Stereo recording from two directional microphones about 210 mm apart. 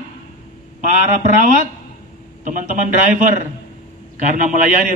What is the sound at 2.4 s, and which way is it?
Speech, 35° right (ahead or behind).